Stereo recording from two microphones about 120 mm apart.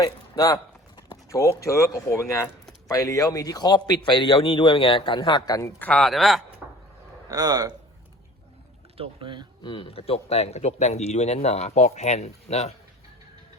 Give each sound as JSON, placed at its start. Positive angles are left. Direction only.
{"t": 0.0, "sound": "a man's voice", "side_deg": 30}
{"t": 6.0, "sound": "speech", "side_deg": 0}
{"t": 7.3, "sound": "a man's voice", "side_deg": -30}
{"t": 9.0, "sound": "speech", "side_deg": -50}
{"t": 9.6, "sound": "speech", "side_deg": 50}